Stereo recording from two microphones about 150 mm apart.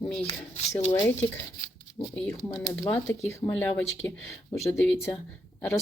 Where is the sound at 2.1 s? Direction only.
10° left (ahead or behind).